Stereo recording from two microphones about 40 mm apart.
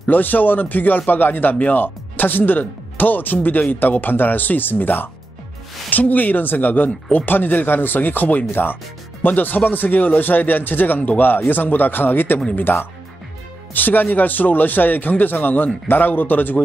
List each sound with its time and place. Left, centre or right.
0.0 s speech: left